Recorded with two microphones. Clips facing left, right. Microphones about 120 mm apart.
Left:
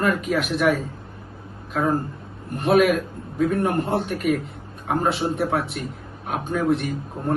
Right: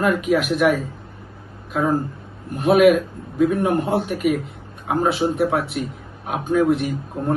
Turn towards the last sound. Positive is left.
turn(degrees=0)  # may be behind; listen again after turning